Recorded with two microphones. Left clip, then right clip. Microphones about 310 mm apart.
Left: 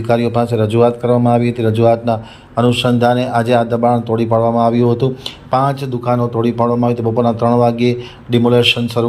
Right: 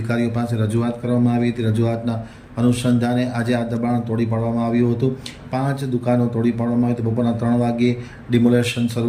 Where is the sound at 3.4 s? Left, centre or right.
Left.